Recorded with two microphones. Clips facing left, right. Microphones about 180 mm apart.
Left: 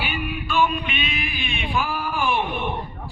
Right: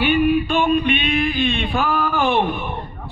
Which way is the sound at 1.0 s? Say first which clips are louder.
Right 11 dB; 60° right (ahead or behind).